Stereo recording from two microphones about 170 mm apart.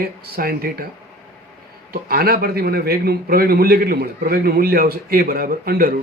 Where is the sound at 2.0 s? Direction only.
65° right (ahead or behind).